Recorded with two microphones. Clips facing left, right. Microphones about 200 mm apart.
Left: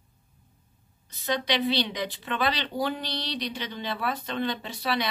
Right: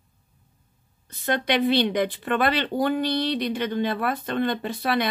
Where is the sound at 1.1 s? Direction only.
55° right (ahead or behind).